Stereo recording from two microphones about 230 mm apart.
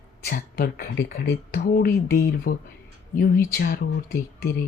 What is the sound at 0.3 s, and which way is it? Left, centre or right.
A woman's voice, left.